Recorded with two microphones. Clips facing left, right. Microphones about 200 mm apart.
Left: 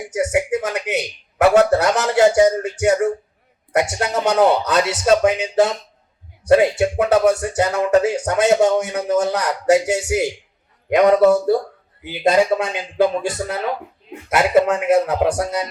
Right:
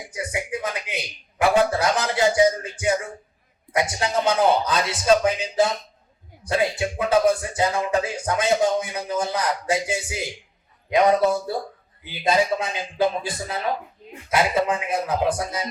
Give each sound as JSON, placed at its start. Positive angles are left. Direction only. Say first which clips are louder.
{"t": 0.1, "sound": "music", "louder": "left 10 dB", "side_deg": 80}
{"t": 10.8, "sound": "a man's voice", "louder": "left 4 dB", "side_deg": 65}
{"t": 12.2, "sound": "music", "louder": "left 5 dB", "side_deg": 70}